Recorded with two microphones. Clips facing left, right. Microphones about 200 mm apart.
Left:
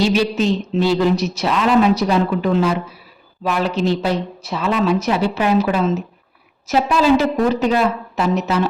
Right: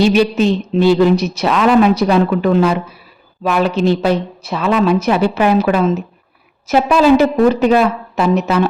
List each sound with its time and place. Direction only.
0.0 s a woman's voice: 60° right (ahead or behind)